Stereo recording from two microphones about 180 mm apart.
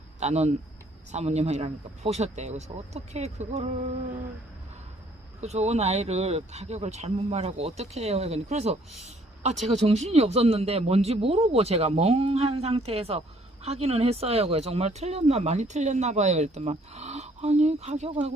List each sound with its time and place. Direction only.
0.2 s speech: 35° right (ahead or behind)
5.4 s speech: 40° right (ahead or behind)